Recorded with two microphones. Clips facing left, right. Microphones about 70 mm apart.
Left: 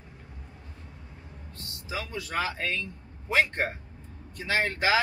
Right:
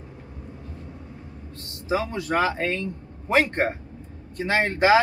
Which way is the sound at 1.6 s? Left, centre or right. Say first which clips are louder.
Right 10 dB; right.